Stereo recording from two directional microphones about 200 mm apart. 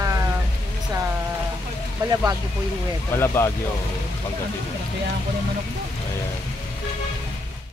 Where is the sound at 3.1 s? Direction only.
15° left (ahead or behind).